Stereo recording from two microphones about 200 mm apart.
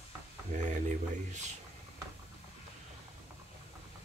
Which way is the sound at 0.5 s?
40° right (ahead or behind).